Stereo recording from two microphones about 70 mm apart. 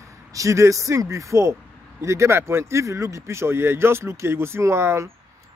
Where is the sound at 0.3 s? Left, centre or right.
Right.